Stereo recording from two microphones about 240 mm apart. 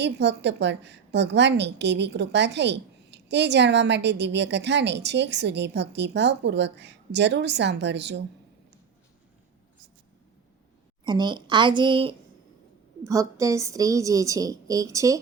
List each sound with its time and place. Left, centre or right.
0.0 s a woman's voice: right
11.0 s a woman's voice: centre